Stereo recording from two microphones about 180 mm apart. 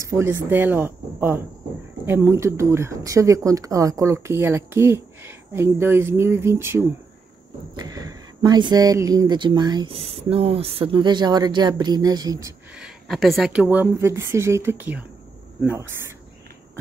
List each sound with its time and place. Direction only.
0.0 s speech: 15° right (ahead or behind)
12.7 s speech: centre (ahead or behind)